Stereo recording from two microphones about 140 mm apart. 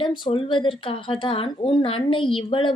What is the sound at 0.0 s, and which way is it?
A woman's voice, 35° left (ahead or behind).